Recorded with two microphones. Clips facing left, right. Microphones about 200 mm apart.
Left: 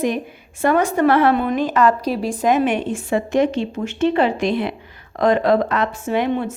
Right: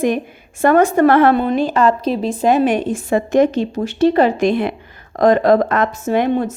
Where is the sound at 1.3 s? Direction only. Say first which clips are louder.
Right 2 dB; 30° right (ahead or behind).